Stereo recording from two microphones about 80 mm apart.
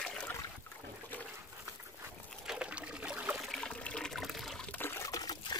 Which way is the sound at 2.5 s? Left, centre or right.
Centre.